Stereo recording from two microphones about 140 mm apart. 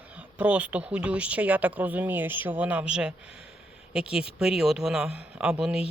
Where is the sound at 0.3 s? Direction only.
10° right (ahead or behind).